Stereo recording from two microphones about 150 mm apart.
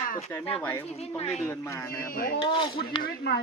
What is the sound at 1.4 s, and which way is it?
Speech, 15° left (ahead or behind).